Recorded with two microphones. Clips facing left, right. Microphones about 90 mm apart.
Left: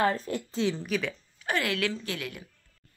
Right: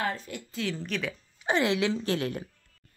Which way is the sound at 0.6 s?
20° left (ahead or behind).